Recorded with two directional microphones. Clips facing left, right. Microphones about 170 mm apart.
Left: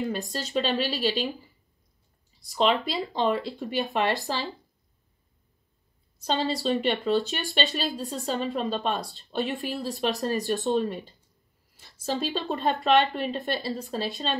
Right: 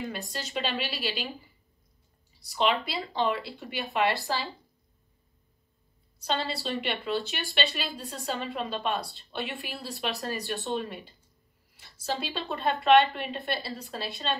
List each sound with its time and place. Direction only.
0.2 s speech: 40° left (ahead or behind)
2.5 s speech: 40° left (ahead or behind)
6.1 s speech: 40° left (ahead or behind)